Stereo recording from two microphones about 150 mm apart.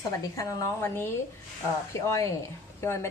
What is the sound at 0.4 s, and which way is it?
A woman's voice, 20° left (ahead or behind).